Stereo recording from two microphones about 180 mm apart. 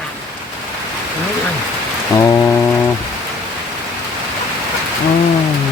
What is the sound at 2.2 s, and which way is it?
Foghorn, 20° left (ahead or behind).